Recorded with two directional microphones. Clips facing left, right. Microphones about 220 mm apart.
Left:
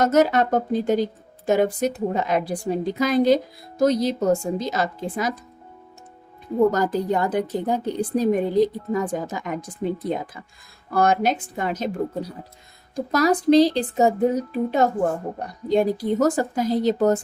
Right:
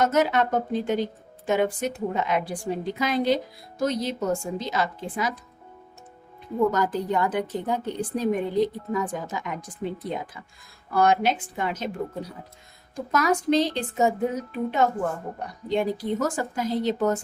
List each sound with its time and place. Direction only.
0.0 s a woman's voice: 40° left (ahead or behind)
6.7 s a woman's voice: 40° left (ahead or behind)
10.9 s a woman's voice: 45° left (ahead or behind)
13.1 s a woman's voice: 35° left (ahead or behind)